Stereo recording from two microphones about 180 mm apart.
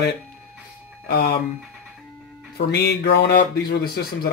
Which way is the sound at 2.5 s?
70° left (ahead or behind).